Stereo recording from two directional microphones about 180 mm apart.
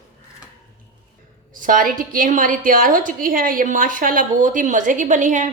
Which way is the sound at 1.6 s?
50° right (ahead or behind).